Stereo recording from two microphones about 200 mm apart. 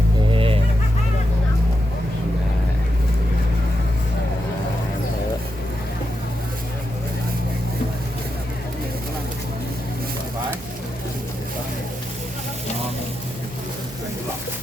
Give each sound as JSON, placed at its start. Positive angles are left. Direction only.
{"t": 0.3, "sound": "fowl", "side_deg": -25}